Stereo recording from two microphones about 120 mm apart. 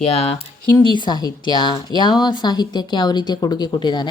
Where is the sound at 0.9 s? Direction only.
40° left (ahead or behind).